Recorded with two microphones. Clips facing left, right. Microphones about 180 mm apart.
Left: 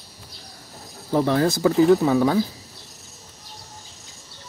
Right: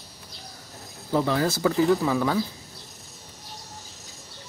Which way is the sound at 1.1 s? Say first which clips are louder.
Left 4 dB; 15° left (ahead or behind).